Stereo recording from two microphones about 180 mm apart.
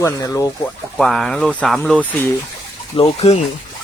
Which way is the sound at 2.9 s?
35° left (ahead or behind).